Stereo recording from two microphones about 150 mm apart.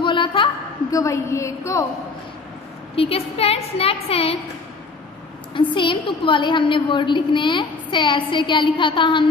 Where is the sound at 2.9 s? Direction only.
40° left (ahead or behind).